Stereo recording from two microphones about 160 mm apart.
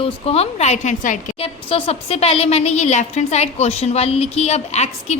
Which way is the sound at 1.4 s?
35° left (ahead or behind).